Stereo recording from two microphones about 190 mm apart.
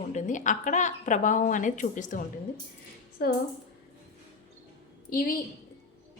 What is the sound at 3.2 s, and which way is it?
Speech, 50° left (ahead or behind).